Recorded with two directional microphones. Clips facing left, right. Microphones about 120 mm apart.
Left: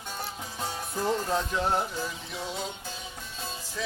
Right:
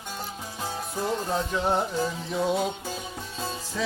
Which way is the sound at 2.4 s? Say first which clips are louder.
Right 10 dB; 55° right (ahead or behind).